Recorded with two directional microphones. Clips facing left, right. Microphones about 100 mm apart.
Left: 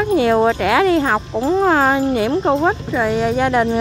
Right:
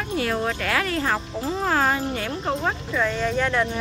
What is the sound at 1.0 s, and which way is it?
Speech, 45° left (ahead or behind).